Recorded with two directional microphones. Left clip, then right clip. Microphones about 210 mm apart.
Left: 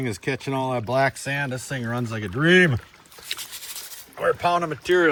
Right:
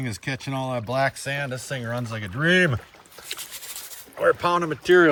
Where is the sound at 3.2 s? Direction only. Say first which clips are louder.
Left 3 dB; 15° right (ahead or behind).